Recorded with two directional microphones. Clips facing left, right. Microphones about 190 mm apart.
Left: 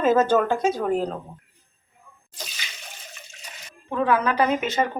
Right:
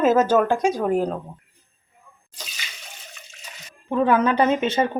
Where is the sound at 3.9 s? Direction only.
20° right (ahead or behind).